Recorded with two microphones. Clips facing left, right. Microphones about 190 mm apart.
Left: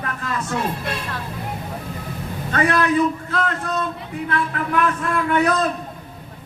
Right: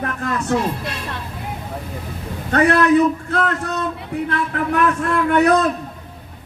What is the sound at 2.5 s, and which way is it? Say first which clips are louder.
Speech: right 4 dB; 60° right (ahead or behind).